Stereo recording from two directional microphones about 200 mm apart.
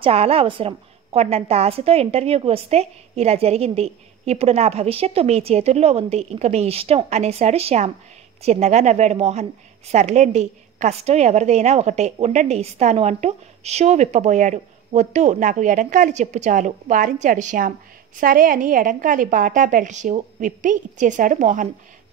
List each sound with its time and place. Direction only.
0.0 s a woman's voice: 30° right (ahead or behind)